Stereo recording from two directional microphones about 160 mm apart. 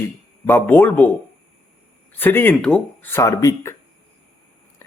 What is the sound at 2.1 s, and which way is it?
Speech, 10° left (ahead or behind).